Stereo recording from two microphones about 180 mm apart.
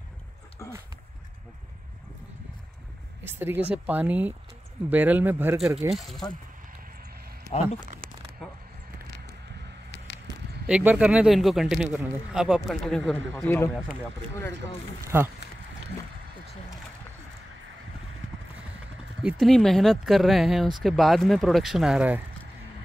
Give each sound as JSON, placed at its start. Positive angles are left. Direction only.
{"t": 0.6, "sound": "dog", "side_deg": 15}
{"t": 3.3, "sound": "speech", "side_deg": -10}
{"t": 5.9, "sound": "speech", "side_deg": 0}
{"t": 8.4, "sound": "a sound", "side_deg": 5}
{"t": 9.8, "sound": "a sound", "side_deg": 75}
{"t": 10.7, "sound": "speech", "side_deg": -10}
{"t": 15.0, "sound": "speech", "side_deg": -15}
{"t": 19.4, "sound": "speech", "side_deg": 0}